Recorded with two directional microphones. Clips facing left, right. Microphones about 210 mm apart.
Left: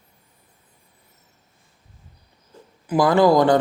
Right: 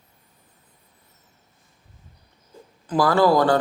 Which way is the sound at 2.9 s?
20° left (ahead or behind).